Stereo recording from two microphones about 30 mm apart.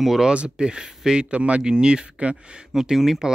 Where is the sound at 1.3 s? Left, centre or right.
Right.